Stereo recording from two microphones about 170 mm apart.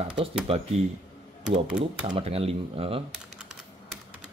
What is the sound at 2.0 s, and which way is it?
Speech, 35° right (ahead or behind).